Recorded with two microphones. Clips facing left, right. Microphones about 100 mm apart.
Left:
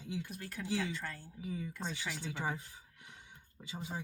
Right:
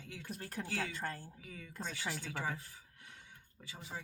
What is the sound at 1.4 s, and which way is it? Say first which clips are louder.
Speech: left 6 dB; 20° left (ahead or behind).